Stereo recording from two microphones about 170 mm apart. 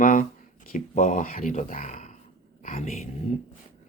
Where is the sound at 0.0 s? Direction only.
50° left (ahead or behind).